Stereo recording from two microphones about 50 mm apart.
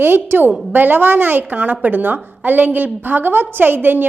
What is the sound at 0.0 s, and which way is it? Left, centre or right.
A woman's voice, right.